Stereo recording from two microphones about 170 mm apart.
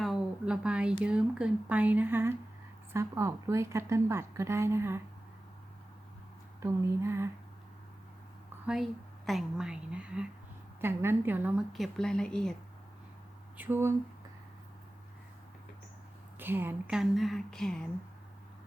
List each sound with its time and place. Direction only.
0.0 s a sound: 5° right (ahead or behind)
1.0 s a woman's voice: 5° right (ahead or behind)
6.6 s a woman's voice: 15° right (ahead or behind)
8.6 s a woman's voice: 5° right (ahead or behind)
13.6 s a woman's voice: 15° right (ahead or behind)
16.4 s a woman's voice: 10° right (ahead or behind); by 17.8 s 5° left (ahead or behind)